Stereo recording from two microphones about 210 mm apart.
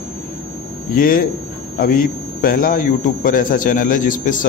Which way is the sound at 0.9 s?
45° left (ahead or behind).